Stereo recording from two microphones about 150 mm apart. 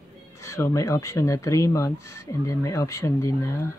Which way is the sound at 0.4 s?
20° left (ahead or behind).